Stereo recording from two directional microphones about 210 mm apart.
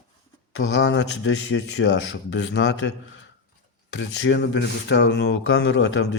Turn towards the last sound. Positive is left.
turn(degrees=65)  # may be behind; listen again after turning